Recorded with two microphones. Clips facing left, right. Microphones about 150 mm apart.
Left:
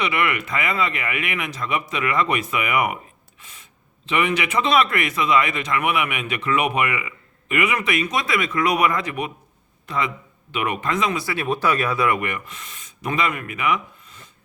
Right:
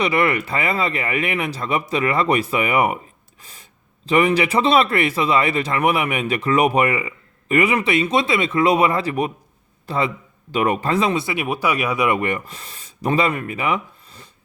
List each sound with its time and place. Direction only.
0.0 s speech: 35° right (ahead or behind); by 12.2 s 20° right (ahead or behind)
12.2 s speech: 35° right (ahead or behind)